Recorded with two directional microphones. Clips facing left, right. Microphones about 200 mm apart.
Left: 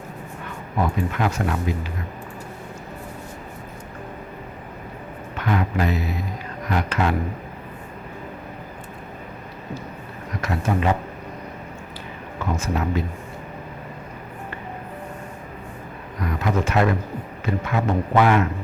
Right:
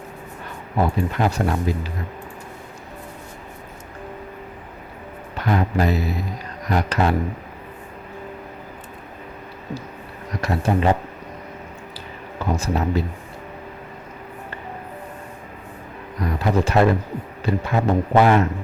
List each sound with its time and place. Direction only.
0.8 s a man's voice: 35° right (ahead or behind)
5.4 s a sound: 35° right (ahead or behind)
6.7 s a man's voice: 35° right (ahead or behind)
10.4 s a man's voice: 35° right (ahead or behind)
12.5 s a man's voice: 35° right (ahead or behind)
16.2 s a man's voice: 35° right (ahead or behind)